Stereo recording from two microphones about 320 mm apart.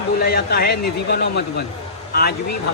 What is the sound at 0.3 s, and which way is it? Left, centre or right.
Speech, left.